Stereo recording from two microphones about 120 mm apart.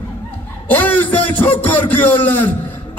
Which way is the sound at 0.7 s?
15° left (ahead or behind).